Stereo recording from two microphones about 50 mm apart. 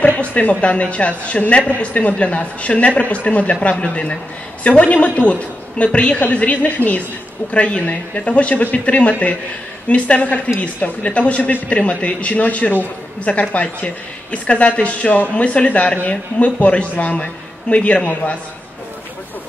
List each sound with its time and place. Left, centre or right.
0.0 s a woman's voice: left